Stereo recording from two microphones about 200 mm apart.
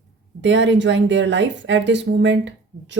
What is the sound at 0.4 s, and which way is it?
A woman's voice, 65° right (ahead or behind).